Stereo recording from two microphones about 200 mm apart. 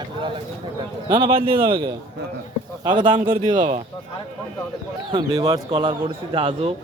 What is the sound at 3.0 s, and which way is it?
Speech, 25° right (ahead or behind).